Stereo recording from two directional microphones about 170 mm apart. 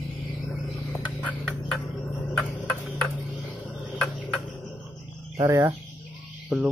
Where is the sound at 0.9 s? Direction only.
15° left (ahead or behind).